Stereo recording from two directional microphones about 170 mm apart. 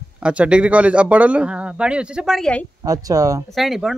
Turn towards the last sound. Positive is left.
turn(degrees=0)  # may be behind; listen again after turning